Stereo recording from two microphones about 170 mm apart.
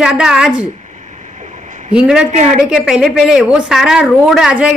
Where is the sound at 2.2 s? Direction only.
45° right (ahead or behind).